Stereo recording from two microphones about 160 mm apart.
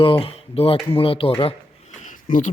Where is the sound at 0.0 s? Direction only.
35° left (ahead or behind).